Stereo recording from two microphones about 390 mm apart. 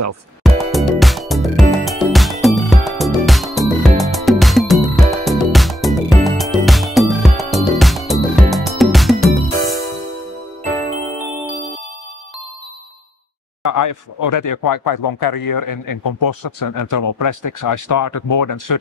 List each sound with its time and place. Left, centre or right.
0.4 s music: centre
13.7 s speech: left